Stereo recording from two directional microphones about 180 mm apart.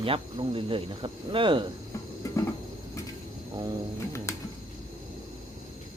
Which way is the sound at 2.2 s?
15° left (ahead or behind).